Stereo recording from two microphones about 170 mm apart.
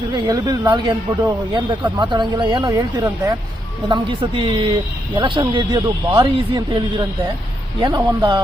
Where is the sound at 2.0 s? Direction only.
25° right (ahead or behind).